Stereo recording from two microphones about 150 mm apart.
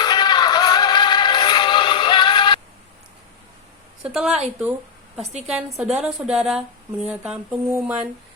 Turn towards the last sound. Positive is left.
turn(degrees=-20)  # may be behind; listen again after turning